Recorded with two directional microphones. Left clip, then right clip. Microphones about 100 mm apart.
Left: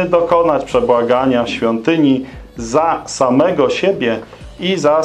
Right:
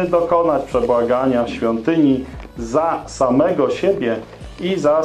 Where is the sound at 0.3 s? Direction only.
30° left (ahead or behind).